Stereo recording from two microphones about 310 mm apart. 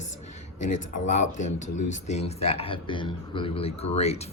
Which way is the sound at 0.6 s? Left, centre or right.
Left.